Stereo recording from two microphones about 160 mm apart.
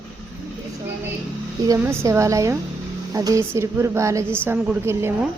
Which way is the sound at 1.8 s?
15° right (ahead or behind).